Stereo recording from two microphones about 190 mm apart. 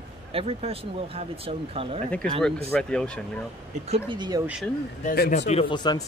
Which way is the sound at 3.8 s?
30° right (ahead or behind).